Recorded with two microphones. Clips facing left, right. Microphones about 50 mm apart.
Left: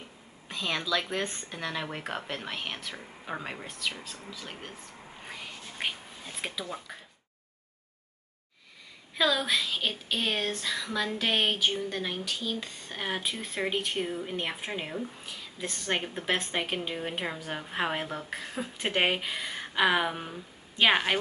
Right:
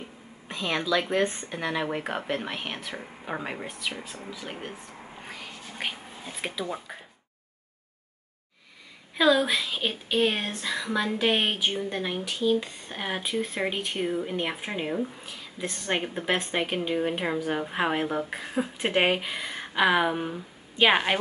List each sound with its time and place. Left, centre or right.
0.5 s speech: centre
5.2 s whispering: centre
9.1 s speech: centre